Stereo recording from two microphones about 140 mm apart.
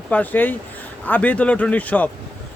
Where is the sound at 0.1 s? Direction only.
10° left (ahead or behind).